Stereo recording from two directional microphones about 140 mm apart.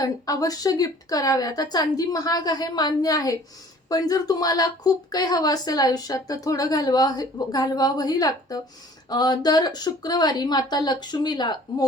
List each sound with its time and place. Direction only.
0.0 s a woman's voice: 25° left (ahead or behind)